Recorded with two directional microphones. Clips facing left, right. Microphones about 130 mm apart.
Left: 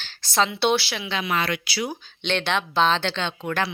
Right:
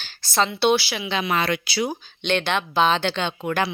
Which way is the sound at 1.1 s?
25° right (ahead or behind).